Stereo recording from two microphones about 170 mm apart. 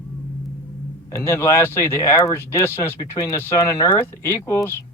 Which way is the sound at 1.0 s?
15° left (ahead or behind).